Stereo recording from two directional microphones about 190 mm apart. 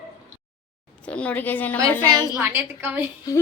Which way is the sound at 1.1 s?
5° left (ahead or behind).